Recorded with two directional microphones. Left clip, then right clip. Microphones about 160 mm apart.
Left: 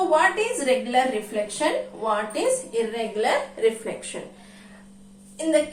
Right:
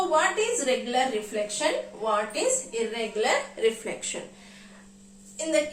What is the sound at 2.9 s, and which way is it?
Speech, 25° right (ahead or behind).